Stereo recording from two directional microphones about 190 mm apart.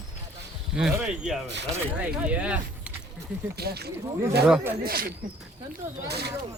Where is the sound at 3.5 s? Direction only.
55° right (ahead or behind).